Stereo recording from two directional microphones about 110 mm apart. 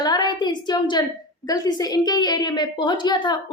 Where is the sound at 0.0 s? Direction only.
40° left (ahead or behind).